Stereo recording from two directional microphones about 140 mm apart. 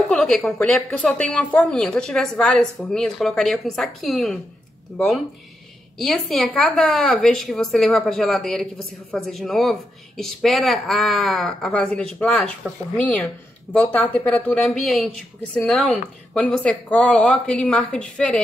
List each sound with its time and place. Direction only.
0.1 s a woman's voice: centre (ahead or behind)